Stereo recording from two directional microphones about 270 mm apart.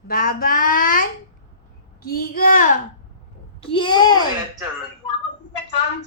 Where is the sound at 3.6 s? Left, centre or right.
Centre.